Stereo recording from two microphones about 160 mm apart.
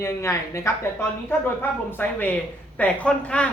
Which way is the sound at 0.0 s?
20° left (ahead or behind).